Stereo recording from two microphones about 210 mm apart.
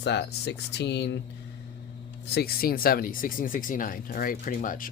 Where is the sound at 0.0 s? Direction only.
55° left (ahead or behind).